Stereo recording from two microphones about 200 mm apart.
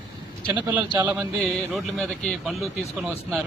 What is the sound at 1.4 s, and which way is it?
Speech, centre (ahead or behind).